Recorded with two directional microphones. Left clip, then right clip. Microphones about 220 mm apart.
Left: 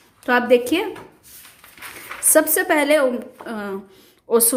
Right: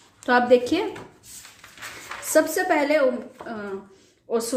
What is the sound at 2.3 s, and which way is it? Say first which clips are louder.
A woman's voice: left 3 dB; 20° left (ahead or behind).